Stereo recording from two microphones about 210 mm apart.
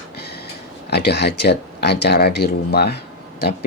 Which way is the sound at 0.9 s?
50° left (ahead or behind).